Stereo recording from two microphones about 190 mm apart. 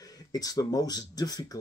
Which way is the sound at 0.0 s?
20° left (ahead or behind).